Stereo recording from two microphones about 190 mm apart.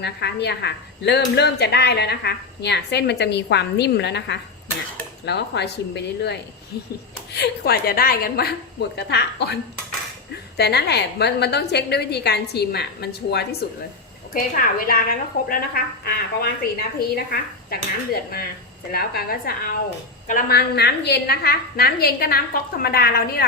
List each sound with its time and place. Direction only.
0.0 s a woman's voice: 60° left (ahead or behind)
10.6 s speech: 60° left (ahead or behind)
14.3 s a woman's voice: 45° left (ahead or behind)